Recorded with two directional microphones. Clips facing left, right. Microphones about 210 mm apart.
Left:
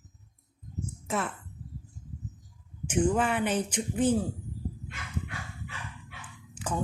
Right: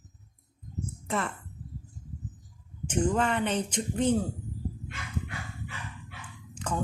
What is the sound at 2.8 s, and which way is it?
Speech, 10° left (ahead or behind).